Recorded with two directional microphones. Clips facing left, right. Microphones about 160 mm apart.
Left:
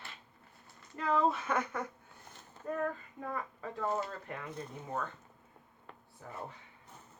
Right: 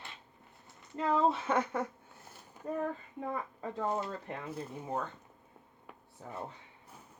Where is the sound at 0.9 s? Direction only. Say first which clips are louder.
Right 1 dB; 25° right (ahead or behind).